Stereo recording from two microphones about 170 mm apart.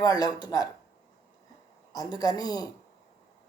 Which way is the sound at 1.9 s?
20° left (ahead or behind).